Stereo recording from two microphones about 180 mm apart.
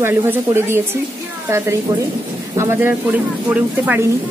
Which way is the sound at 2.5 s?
15° right (ahead or behind).